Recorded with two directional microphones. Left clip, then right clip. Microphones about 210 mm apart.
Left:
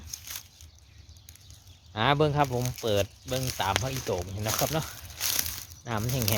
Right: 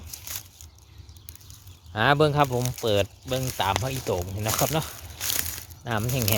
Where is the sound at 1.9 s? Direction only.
15° right (ahead or behind).